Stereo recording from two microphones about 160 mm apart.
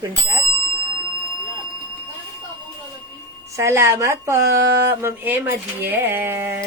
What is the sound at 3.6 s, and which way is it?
Speech, 20° right (ahead or behind).